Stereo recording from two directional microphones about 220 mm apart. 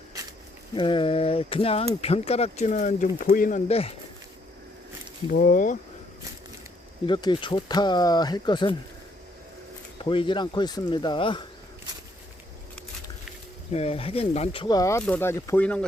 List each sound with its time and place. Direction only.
0.8 s speech: 25° left (ahead or behind)
3.7 s speech: 25° left (ahead or behind)
5.3 s speech: 40° left (ahead or behind)
7.1 s speech: 20° left (ahead or behind)
10.0 s speech: 25° left (ahead or behind)
13.7 s speech: 25° left (ahead or behind); by 15.9 s 5° left (ahead or behind)